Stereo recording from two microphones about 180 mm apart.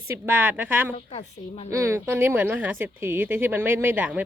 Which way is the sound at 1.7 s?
15° right (ahead or behind).